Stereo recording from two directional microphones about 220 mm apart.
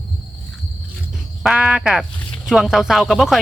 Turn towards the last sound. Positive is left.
turn(degrees=0)  # may be behind; listen again after turning